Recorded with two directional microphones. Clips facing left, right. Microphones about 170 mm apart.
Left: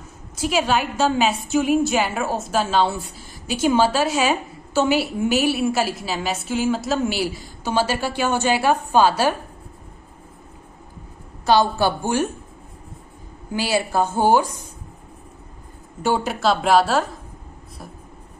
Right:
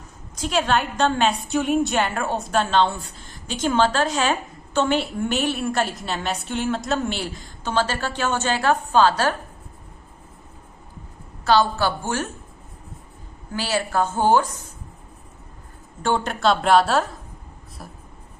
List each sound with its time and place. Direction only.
0.4 s a woman's voice: 5° left (ahead or behind)
11.4 s a woman's voice: 15° left (ahead or behind)
13.5 s a woman's voice: 15° left (ahead or behind)
16.0 s a woman's voice: 5° left (ahead or behind)